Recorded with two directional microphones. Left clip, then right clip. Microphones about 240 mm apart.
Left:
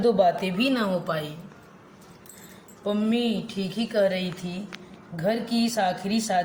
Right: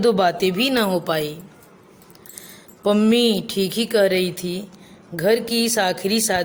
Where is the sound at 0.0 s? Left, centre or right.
Right.